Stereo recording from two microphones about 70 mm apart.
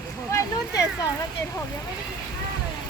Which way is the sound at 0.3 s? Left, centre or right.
Left.